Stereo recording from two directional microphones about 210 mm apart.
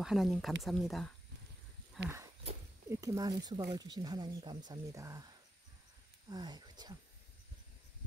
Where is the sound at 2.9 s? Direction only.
15° right (ahead or behind).